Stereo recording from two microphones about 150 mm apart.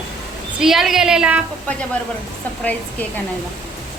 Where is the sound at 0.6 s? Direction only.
Centre (ahead or behind).